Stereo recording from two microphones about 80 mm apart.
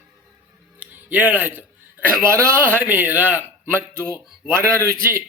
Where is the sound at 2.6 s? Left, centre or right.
Right.